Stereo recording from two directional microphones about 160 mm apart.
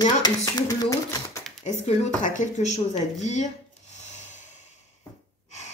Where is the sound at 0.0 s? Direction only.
25° left (ahead or behind).